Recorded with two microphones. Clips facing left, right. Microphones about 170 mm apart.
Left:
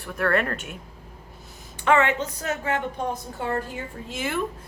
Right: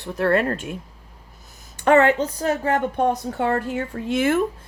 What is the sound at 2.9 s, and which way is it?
Speech, 65° right (ahead or behind).